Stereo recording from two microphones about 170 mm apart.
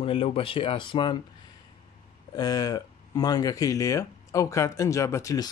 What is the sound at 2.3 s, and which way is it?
Speech, 20° left (ahead or behind).